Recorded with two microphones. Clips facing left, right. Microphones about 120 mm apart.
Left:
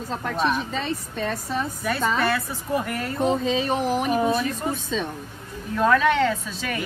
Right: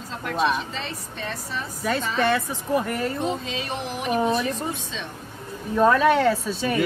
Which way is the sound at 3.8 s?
45° left (ahead or behind).